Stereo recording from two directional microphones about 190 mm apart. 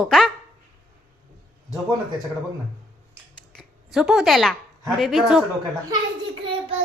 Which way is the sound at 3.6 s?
Centre (ahead or behind).